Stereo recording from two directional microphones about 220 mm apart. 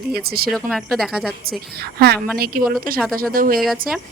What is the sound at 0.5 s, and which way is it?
Speech, centre (ahead or behind).